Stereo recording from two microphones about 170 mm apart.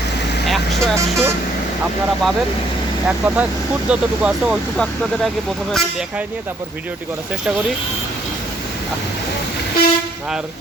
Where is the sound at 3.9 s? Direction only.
5° right (ahead or behind).